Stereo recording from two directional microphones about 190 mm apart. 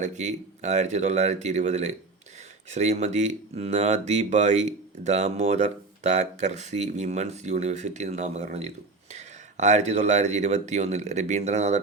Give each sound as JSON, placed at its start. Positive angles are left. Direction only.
{"t": 0.0, "sound": "speech", "side_deg": -40}